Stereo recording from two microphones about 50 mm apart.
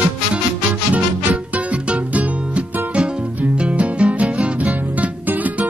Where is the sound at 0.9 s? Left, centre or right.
Right.